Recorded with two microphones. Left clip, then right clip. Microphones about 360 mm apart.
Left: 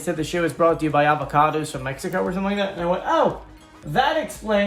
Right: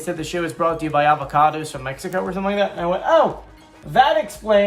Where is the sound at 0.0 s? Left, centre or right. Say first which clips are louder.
Left 1 dB; centre.